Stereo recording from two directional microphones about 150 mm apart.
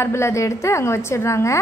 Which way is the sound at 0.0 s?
20° left (ahead or behind).